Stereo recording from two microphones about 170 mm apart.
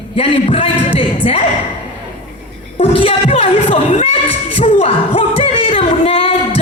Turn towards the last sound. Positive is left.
turn(degrees=35)  # may be behind; listen again after turning